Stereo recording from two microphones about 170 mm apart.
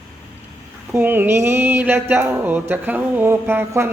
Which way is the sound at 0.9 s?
10° right (ahead or behind).